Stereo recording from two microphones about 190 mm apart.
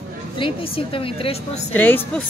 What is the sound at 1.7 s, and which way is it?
Speech, 10° left (ahead or behind).